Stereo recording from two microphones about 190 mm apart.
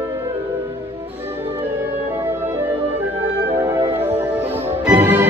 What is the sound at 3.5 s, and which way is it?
Music, 15° right (ahead or behind).